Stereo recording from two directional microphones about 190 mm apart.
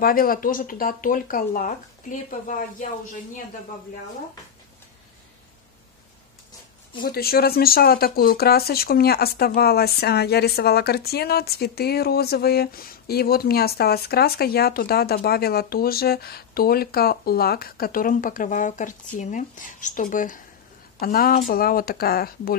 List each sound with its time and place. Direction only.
0.0 s speech: 50° left (ahead or behind)
7.0 s speech: 55° left (ahead or behind)